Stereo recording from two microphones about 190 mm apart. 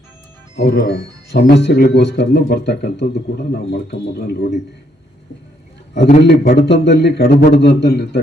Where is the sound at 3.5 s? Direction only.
55° left (ahead or behind).